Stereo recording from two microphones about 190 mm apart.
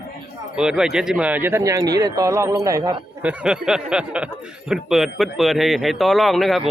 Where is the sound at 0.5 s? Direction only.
5° right (ahead or behind).